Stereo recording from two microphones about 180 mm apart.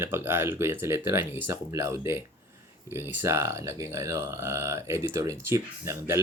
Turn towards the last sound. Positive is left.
turn(degrees=-15)  # may be behind; listen again after turning